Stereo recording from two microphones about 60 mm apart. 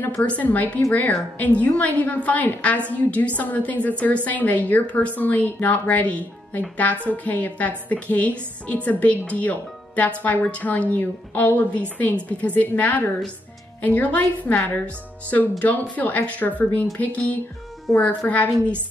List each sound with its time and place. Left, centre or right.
0.1 s a woman's voice: left